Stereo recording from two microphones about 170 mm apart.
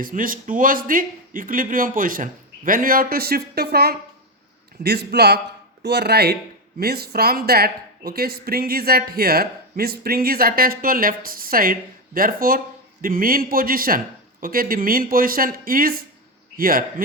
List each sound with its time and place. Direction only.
0.0 s a man's voice: 55° right (ahead or behind)